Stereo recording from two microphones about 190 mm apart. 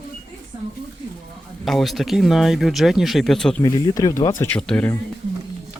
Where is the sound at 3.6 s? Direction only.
20° left (ahead or behind).